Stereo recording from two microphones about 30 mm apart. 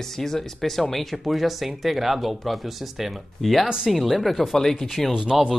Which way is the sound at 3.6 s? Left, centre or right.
Right.